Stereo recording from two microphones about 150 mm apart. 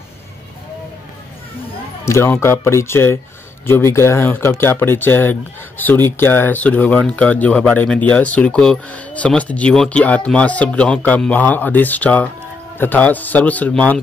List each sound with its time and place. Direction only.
2.0 s speech: 15° left (ahead or behind)